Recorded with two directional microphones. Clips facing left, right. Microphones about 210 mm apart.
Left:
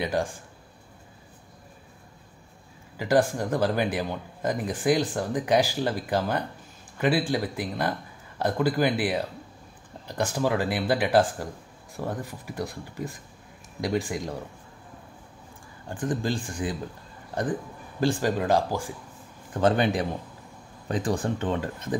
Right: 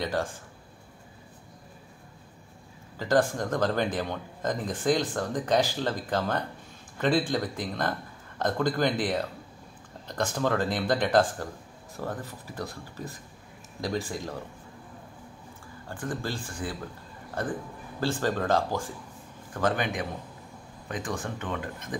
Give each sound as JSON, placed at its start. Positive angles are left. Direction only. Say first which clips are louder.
{"t": 0.0, "sound": "speech", "louder": "left 2 dB", "side_deg": 10}
{"t": 3.0, "sound": "speech", "louder": "left 2 dB", "side_deg": 10}
{"t": 15.9, "sound": "speech", "louder": "left 5 dB", "side_deg": 15}
{"t": 19.5, "sound": "a man's voice", "louder": "left 5 dB", "side_deg": 25}